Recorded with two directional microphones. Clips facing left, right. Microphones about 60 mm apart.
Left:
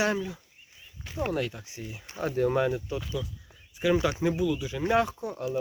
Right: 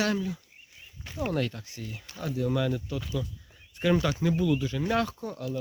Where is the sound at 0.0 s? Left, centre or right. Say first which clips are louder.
Left 1 dB; left.